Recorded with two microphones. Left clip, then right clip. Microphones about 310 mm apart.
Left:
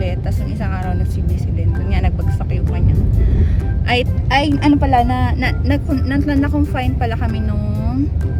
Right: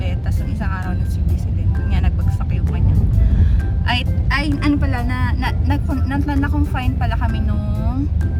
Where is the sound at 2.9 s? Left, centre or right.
Centre.